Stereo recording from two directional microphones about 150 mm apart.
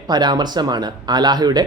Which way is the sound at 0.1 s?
30° right (ahead or behind).